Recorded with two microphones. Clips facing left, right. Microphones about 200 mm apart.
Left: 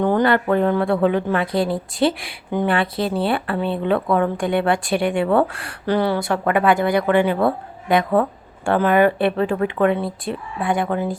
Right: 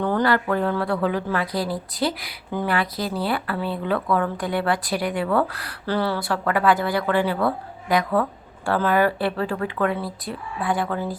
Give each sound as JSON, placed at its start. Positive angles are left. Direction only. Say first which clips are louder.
{"t": 0.0, "sound": "speech", "louder": "left 4 dB", "side_deg": 15}